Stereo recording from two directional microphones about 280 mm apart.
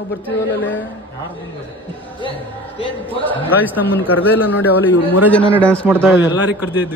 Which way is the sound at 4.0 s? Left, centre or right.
Centre.